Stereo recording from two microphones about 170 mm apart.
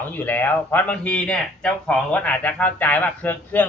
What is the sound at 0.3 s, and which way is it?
Speech, 10° left (ahead or behind).